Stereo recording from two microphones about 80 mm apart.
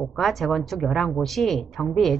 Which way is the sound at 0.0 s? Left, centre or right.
Centre.